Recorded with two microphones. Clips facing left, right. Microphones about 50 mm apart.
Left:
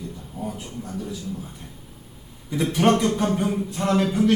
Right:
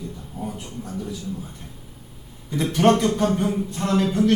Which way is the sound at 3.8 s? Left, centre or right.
Left.